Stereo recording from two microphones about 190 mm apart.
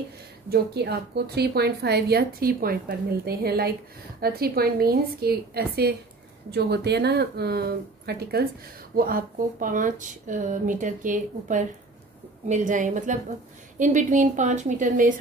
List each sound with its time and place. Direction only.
0.5 s a woman's voice: 60° right (ahead or behind); by 15.1 s 45° right (ahead or behind)